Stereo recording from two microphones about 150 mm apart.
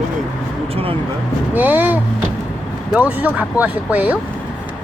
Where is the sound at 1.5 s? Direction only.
10° right (ahead or behind).